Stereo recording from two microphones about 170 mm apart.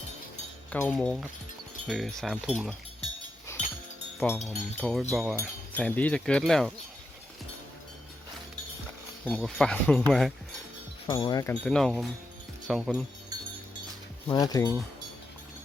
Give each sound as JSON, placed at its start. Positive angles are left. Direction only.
{"t": 0.7, "sound": "speech", "side_deg": 10}
{"t": 4.2, "sound": "speech", "side_deg": 0}
{"t": 9.2, "sound": "speech", "side_deg": 5}
{"t": 11.0, "sound": "speech", "side_deg": 25}
{"t": 11.6, "sound": "speech", "side_deg": 5}
{"t": 14.3, "sound": "speech", "side_deg": 20}